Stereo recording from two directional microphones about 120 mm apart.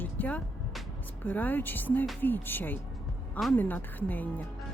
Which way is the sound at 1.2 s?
15° left (ahead or behind).